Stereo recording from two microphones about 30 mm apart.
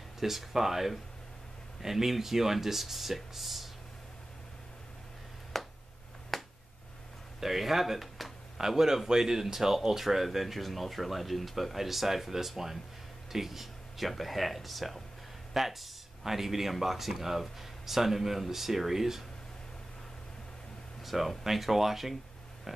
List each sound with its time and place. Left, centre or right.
0.2 s speech: centre
5.5 s a sound: centre
6.3 s finger snapping: centre
7.3 s speech: centre
8.5 s speech: centre
21.0 s a sound: centre
21.5 s speech: centre